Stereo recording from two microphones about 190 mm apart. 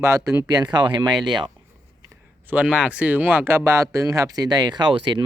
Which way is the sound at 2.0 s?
10° right (ahead or behind).